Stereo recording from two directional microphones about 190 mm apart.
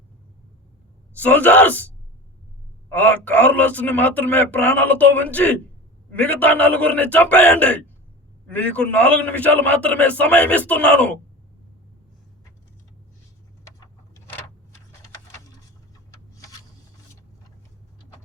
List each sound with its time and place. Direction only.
1.1 s a man's voice: 10° left (ahead or behind)
2.9 s a man's voice: 10° left (ahead or behind)
13.7 s vehicle: 15° left (ahead or behind)
16.1 s a sound: 20° left (ahead or behind)